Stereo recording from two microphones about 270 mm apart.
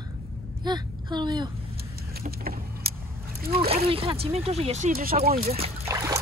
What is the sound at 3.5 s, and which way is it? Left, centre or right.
Speech, right.